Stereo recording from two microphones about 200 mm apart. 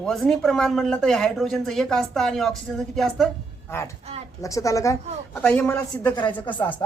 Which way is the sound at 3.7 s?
15° left (ahead or behind).